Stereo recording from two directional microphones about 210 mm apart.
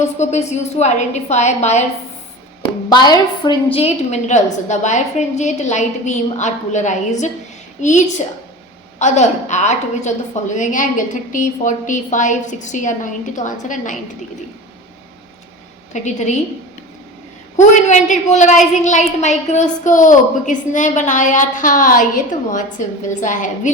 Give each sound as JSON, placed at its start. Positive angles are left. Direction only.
{"t": 0.0, "sound": "a woman's voice", "side_deg": 35}
{"t": 2.9, "sound": "a woman's voice", "side_deg": 20}
{"t": 15.9, "sound": "a woman's voice", "side_deg": 35}
{"t": 17.6, "sound": "a woman's voice", "side_deg": 35}